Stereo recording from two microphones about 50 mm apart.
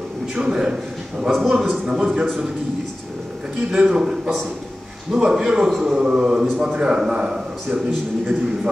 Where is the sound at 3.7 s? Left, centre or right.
Centre.